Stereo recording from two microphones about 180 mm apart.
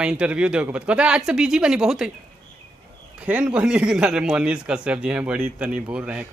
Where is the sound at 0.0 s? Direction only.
5° right (ahead or behind).